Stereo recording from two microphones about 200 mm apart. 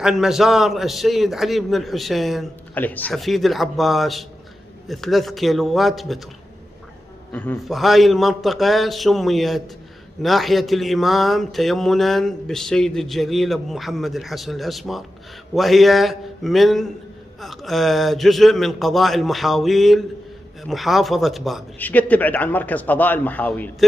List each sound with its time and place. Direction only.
0.0 s speech: centre (ahead or behind)
7.3 s speech: 5° left (ahead or behind)